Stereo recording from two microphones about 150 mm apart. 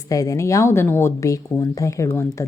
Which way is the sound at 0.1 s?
25° left (ahead or behind).